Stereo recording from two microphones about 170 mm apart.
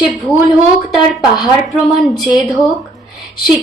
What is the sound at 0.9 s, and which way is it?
A woman's voice, centre (ahead or behind).